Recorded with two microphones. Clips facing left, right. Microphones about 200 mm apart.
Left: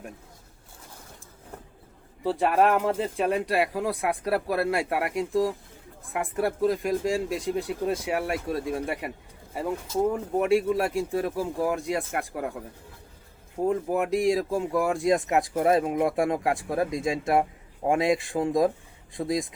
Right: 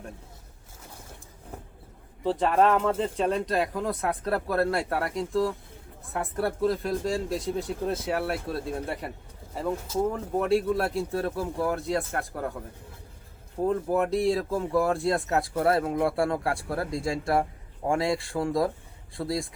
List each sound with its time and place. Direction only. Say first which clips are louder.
2.2 s speech: even; 10° left (ahead or behind)
13.7 s speech: even; 10° left (ahead or behind)